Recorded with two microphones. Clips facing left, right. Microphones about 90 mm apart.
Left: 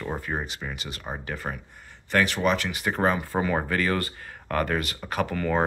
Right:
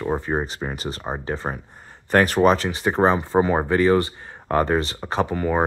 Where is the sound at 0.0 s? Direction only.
25° right (ahead or behind).